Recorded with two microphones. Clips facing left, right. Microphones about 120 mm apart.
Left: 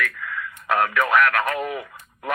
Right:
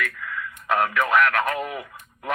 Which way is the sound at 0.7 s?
Centre (ahead or behind).